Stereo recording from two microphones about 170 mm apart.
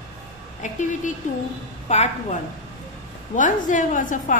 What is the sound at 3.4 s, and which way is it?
Speech, 50° left (ahead or behind).